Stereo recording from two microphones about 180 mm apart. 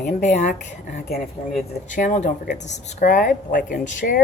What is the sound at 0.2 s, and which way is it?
Speech, 40° left (ahead or behind).